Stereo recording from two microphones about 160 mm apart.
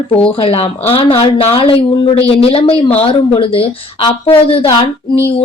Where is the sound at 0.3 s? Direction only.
35° left (ahead or behind).